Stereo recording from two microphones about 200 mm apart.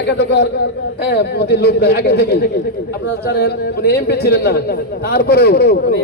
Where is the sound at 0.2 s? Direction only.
60° left (ahead or behind).